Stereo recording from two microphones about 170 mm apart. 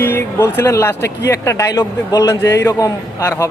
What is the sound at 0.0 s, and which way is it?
A man's voice, 15° left (ahead or behind).